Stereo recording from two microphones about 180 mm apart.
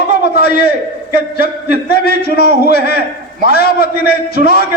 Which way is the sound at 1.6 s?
60° left (ahead or behind).